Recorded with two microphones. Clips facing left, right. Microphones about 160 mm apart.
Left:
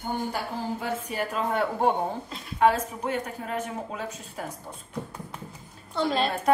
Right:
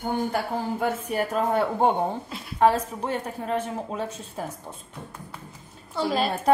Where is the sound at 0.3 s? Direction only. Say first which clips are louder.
Right 4 dB; 50° right (ahead or behind).